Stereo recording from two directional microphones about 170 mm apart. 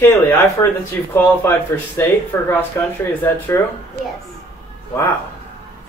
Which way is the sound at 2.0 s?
15° left (ahead or behind).